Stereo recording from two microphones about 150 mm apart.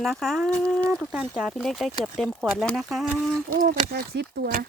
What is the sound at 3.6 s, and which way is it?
Speech, 65° right (ahead or behind).